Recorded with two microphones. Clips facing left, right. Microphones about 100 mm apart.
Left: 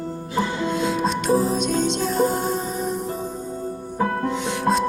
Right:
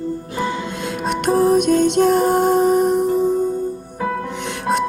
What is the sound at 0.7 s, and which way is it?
Music, 60° right (ahead or behind).